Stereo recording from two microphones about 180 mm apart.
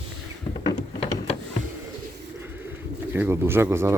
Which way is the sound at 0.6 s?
25° left (ahead or behind).